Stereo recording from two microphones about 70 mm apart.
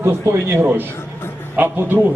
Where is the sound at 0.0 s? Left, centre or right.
Right.